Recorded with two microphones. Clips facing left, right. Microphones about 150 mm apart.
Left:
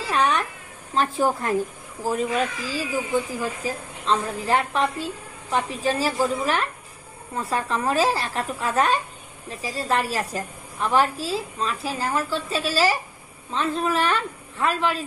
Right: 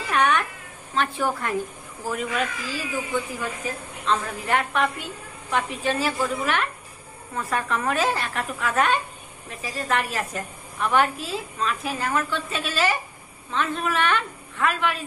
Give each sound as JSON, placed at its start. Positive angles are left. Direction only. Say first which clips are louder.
{"t": 0.0, "sound": "a woman's voice", "louder": "even", "side_deg": 35}